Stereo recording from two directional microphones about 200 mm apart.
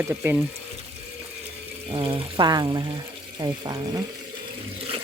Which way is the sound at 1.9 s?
25° right (ahead or behind).